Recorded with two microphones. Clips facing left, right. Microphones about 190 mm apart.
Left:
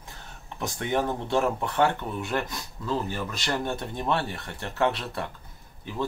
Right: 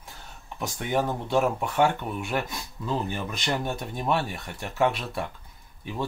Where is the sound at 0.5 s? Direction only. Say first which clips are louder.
Even; 5° right (ahead or behind).